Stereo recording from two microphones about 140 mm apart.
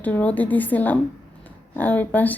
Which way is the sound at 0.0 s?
10° left (ahead or behind).